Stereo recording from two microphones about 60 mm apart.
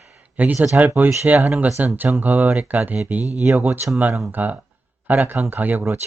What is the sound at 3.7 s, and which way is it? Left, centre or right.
Speech, centre.